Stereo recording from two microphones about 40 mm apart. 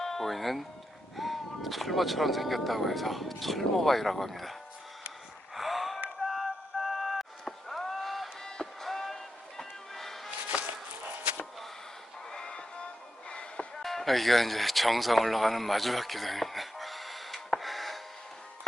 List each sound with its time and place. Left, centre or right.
0.0 s speech: centre
5.5 s gasp: centre
6.2 s music: centre
10.5 s a sound: right
12.3 s music: left
13.8 s speech: centre
17.6 s a sound: centre